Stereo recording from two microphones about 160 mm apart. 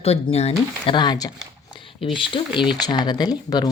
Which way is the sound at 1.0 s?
25° left (ahead or behind).